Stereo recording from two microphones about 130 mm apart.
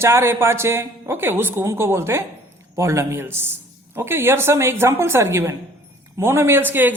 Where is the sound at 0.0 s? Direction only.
20° right (ahead or behind).